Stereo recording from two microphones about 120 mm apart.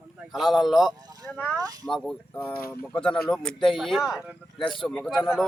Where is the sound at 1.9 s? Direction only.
5° left (ahead or behind).